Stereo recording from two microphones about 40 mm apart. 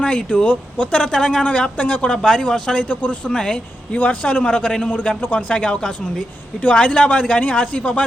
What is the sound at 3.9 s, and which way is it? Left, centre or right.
Speech, left.